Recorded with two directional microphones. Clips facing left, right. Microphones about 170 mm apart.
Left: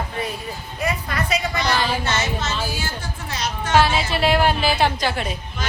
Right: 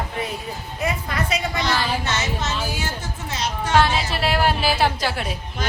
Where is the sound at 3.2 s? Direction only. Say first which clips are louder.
Right 1 dB; 25° right (ahead or behind).